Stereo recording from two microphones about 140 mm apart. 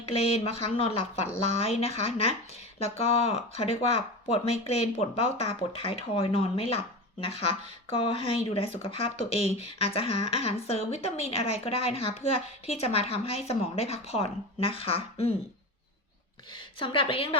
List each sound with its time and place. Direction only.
0.0 s speech: 45° left (ahead or behind)
16.5 s a woman's voice: 35° left (ahead or behind)